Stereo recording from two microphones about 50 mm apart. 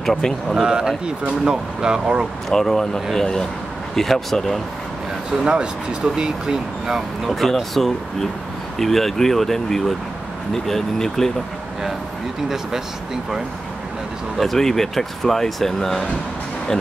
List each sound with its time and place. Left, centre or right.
0.0 s speech: centre
0.6 s speech: centre
2.5 s speech: centre
5.4 s speech: centre
7.2 s speech: centre
14.4 s speech: centre